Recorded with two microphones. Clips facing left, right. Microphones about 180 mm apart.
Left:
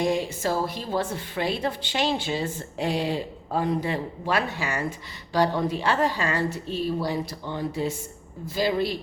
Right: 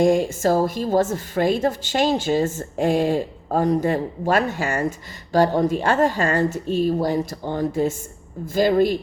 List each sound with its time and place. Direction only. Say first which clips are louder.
0.0 s a woman's voice: right 7 dB; 45° right (ahead or behind)